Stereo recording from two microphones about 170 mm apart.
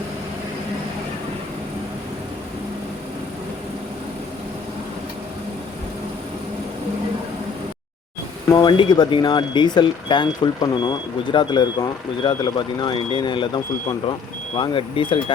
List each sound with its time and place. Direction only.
8.5 s speech: 25° left (ahead or behind)